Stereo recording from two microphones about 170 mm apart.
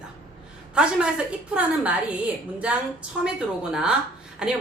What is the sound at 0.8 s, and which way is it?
Speech, 5° right (ahead or behind).